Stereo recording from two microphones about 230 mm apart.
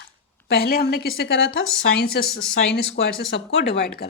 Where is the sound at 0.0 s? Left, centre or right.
Left.